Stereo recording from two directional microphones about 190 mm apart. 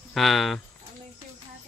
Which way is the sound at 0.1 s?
Centre (ahead or behind).